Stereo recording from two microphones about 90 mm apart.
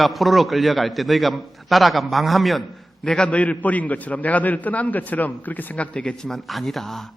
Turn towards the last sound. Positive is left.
turn(degrees=5)  # may be behind; listen again after turning